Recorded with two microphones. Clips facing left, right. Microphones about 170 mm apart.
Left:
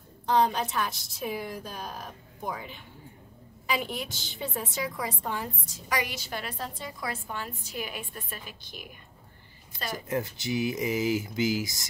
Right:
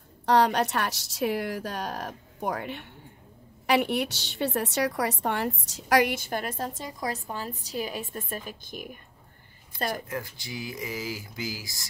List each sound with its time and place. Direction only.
0.3 s a woman's voice: 75° right (ahead or behind); by 10.0 s 55° right (ahead or behind)
10.0 s speech: 25° left (ahead or behind)